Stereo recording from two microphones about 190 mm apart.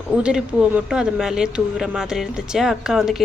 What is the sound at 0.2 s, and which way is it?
A woman's voice, 5° right (ahead or behind).